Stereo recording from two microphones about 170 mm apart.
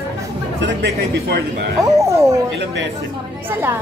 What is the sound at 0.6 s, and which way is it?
Speech, 90° right.